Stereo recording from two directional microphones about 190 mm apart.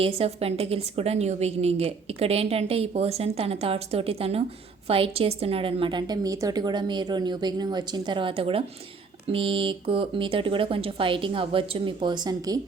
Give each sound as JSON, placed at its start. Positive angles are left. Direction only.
{"t": 0.0, "sound": "a woman's voice", "side_deg": -30}